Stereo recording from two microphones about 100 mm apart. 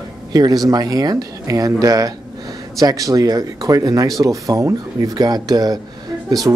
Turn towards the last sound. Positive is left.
turn(degrees=-30)  # may be behind; listen again after turning